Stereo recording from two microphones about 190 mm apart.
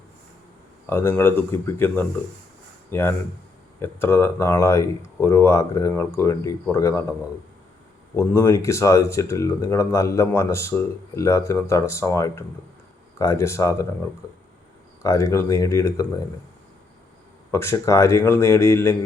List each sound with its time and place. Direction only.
0.9 s speech: 10° left (ahead or behind)
8.1 s speech: 10° left (ahead or behind)
15.0 s speech: 15° left (ahead or behind)
17.5 s speech: 15° left (ahead or behind)